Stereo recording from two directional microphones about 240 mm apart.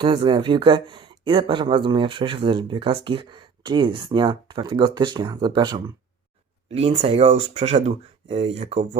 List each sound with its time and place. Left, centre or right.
0.0 s speech: centre